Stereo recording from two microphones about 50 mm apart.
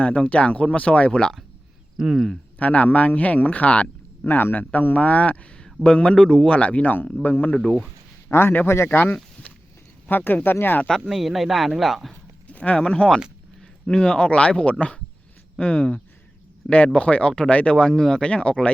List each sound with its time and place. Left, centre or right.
0.0 s speech: left
2.6 s speech: left
4.3 s a man's voice: left; by 6.6 s centre
6.6 s speech: left
8.3 s a man's voice: left
10.1 s speech: left
11.1 s speech: centre
12.5 s a sound: left
12.8 s speech: centre
13.6 s a sound: centre
14.1 s speech: left
17.7 s speech: centre
18.2 s speech: left